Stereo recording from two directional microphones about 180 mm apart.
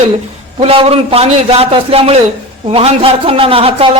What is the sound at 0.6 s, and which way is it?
A man's voice, 35° right (ahead or behind).